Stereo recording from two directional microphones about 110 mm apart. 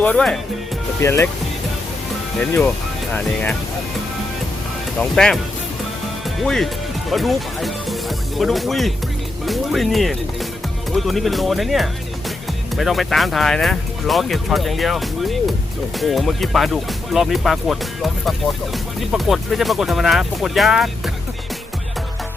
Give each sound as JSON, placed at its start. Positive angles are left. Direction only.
{"t": 0.0, "sound": "speech", "side_deg": 10}
{"t": 1.0, "sound": "speech", "side_deg": 25}
{"t": 2.4, "sound": "speech", "side_deg": 5}
{"t": 4.9, "sound": "speech", "side_deg": 5}
{"t": 6.4, "sound": "speech", "side_deg": 5}